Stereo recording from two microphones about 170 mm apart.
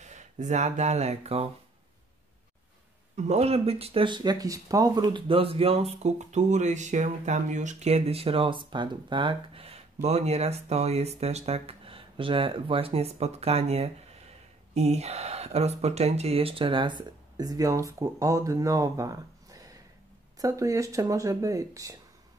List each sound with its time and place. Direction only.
0.0 s speech: 45° right (ahead or behind)
3.2 s speech: 40° right (ahead or behind); by 21.9 s 20° right (ahead or behind)